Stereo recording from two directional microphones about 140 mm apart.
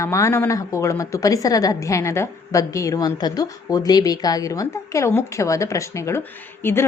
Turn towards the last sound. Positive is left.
turn(degrees=15)  # may be behind; listen again after turning